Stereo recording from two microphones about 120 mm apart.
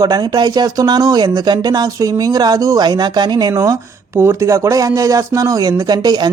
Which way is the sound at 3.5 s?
25° right (ahead or behind).